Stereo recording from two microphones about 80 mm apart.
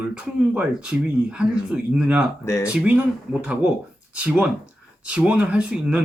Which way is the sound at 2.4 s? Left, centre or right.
Left.